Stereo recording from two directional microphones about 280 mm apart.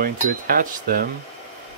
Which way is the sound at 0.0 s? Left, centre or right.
Right.